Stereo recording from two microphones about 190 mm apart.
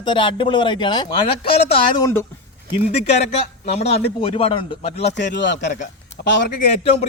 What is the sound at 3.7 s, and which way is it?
Speech, 35° left (ahead or behind).